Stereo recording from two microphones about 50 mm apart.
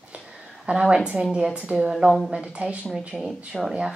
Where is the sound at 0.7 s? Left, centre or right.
Centre.